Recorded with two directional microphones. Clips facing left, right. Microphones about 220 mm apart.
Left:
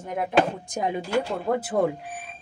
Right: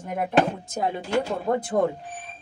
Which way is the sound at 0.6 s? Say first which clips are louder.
Even; 15° left (ahead or behind).